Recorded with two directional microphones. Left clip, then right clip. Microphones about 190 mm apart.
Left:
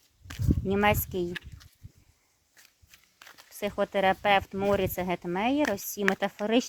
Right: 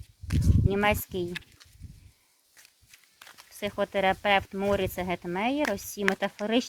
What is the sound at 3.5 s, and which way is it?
Speech, 35° left (ahead or behind).